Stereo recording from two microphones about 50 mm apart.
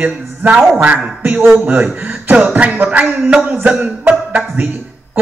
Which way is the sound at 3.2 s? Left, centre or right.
Centre.